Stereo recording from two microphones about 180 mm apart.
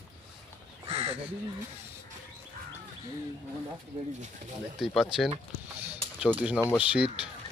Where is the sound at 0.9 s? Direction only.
30° right (ahead or behind).